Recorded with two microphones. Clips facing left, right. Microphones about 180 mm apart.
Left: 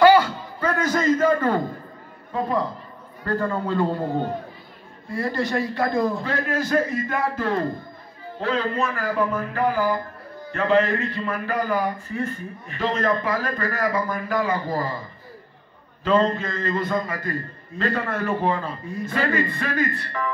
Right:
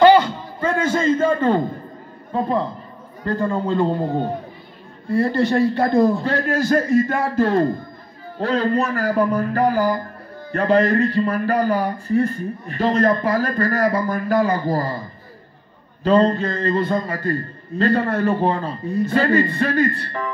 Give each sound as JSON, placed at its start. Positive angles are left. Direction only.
{"t": 0.0, "sound": "a sound", "side_deg": -25}
{"t": 2.3, "sound": "a man's voice", "side_deg": -30}
{"t": 5.1, "sound": "a man's voice", "side_deg": -30}
{"t": 6.7, "sound": "speech", "side_deg": -45}
{"t": 8.4, "sound": "a man's voice", "side_deg": -40}
{"t": 16.0, "sound": "a man's voice", "side_deg": -35}